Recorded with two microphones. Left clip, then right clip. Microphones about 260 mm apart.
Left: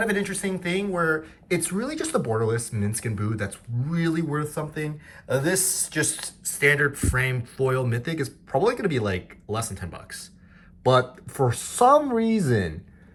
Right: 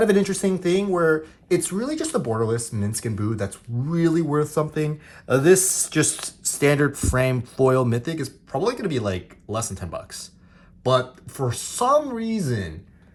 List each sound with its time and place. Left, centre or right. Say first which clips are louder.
0.0 s speech: right 6 dB; centre
6.7 s speech: even; centre